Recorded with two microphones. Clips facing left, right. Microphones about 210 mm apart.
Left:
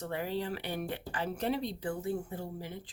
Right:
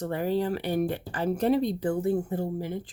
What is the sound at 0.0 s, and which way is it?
Speech, 45° right (ahead or behind).